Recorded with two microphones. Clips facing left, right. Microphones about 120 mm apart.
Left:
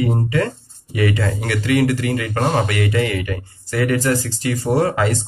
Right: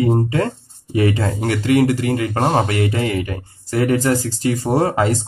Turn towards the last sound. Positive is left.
turn(degrees=-25)  # may be behind; listen again after turning